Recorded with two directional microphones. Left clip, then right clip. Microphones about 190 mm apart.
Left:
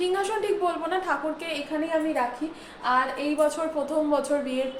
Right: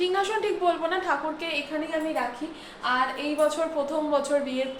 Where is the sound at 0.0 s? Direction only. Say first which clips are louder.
Right 1 dB; centre (ahead or behind).